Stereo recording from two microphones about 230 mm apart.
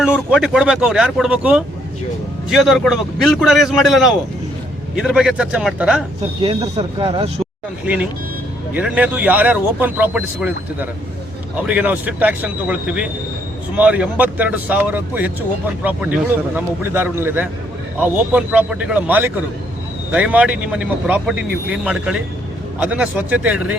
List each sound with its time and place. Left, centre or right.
0.3 s speech: centre
6.4 s speech: right
7.9 s speech: centre